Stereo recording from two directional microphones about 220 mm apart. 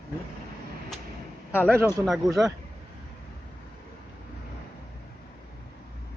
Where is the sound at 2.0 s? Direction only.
Centre (ahead or behind).